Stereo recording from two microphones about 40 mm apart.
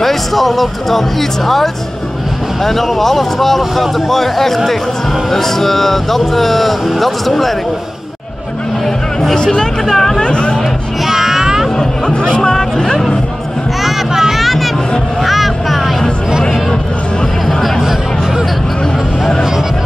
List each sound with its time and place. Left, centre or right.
0.0 s speech: centre
8.8 s a sound: centre
9.4 s speech: centre
10.2 s speech: left
11.1 s a sound: centre
12.1 s chatter: centre
13.8 s vehicle: centre
17.5 s music: centre